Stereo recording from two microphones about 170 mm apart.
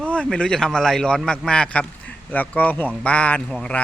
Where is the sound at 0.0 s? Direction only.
5° left (ahead or behind).